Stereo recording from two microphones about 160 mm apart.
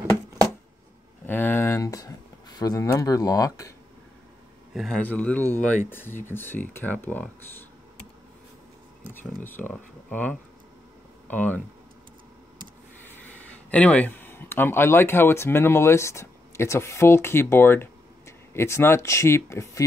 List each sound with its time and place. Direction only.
1.2 s speech: 10° left (ahead or behind)
4.7 s speech: 5° left (ahead or behind)
9.1 s speech: 15° left (ahead or behind)
13.7 s speech: 10° left (ahead or behind)